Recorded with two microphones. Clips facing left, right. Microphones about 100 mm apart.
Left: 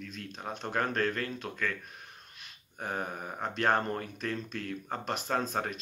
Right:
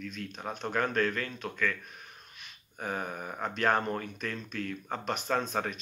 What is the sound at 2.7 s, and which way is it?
Speech, 30° left (ahead or behind).